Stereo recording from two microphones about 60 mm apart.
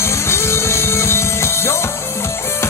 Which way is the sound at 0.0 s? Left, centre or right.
Left.